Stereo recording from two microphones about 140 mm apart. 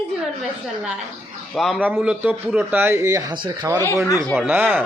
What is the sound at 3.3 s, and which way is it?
Speech, 35° right (ahead or behind).